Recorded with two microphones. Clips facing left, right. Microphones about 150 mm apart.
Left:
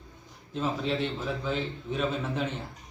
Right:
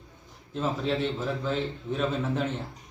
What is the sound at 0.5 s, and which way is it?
A man's voice, centre (ahead or behind).